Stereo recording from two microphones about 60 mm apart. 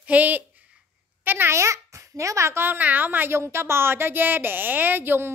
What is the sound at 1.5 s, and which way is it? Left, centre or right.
A child's voice, right.